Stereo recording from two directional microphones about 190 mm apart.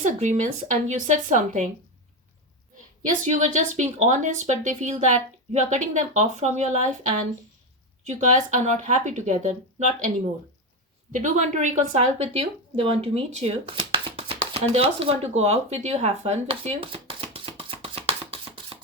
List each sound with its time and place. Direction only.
0.0 s speech: 40° right (ahead or behind)
3.2 s speech: 40° right (ahead or behind)
11.1 s speech: 40° right (ahead or behind)